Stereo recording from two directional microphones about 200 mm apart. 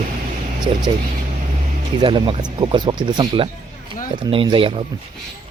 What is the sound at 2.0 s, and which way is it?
Speech, 25° right (ahead or behind).